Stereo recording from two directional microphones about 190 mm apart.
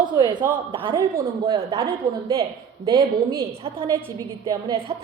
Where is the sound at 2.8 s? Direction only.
25° right (ahead or behind).